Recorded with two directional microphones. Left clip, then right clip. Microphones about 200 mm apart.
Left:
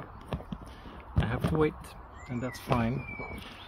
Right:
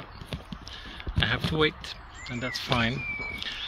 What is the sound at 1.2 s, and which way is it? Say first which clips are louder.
Speech: right 4 dB; 10° left (ahead or behind).